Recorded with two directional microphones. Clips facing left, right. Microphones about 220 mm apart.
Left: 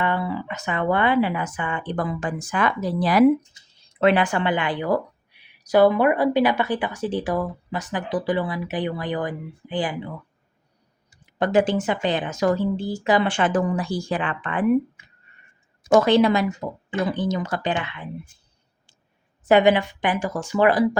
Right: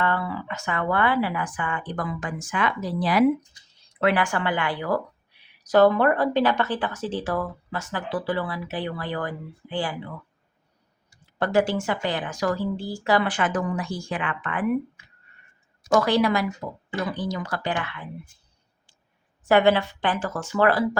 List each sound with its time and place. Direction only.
0.0 s speech: 15° left (ahead or behind); by 3.2 s 45° left (ahead or behind)
3.5 s speech: 25° left (ahead or behind)
11.1 s speech: 15° left (ahead or behind)
19.5 s speech: 15° left (ahead or behind)